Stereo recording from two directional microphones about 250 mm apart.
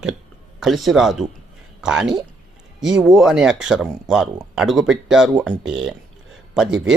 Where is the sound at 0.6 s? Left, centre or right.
Centre.